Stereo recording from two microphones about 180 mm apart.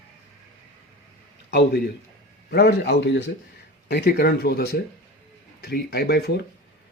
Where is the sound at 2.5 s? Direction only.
65° left (ahead or behind).